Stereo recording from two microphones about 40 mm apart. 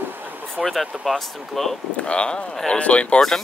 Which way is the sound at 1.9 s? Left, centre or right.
Left.